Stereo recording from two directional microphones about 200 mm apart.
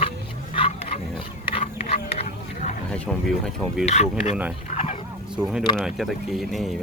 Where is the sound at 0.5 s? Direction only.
30° left (ahead or behind).